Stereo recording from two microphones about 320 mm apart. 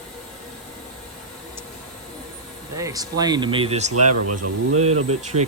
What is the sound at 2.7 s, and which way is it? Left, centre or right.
Speech, centre.